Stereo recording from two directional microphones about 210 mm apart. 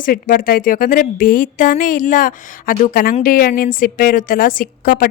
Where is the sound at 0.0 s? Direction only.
40° left (ahead or behind).